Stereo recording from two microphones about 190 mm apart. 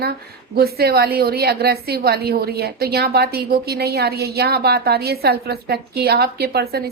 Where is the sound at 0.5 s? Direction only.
55° right (ahead or behind).